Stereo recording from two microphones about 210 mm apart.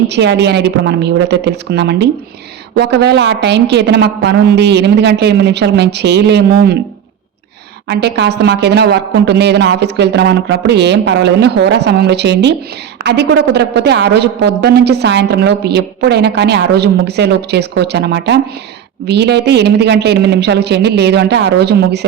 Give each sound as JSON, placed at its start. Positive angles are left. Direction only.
{"t": 0.1, "sound": "a woman's voice", "side_deg": -55}
{"t": 7.9, "sound": "a woman's voice", "side_deg": -55}